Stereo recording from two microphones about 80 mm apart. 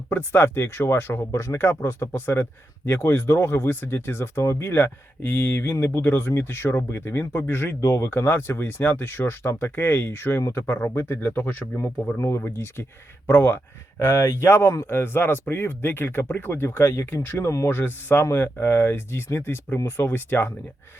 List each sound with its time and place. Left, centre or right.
0.1 s speech: left
1.2 s speech: left
12.1 s speech: left
17.7 s speech: left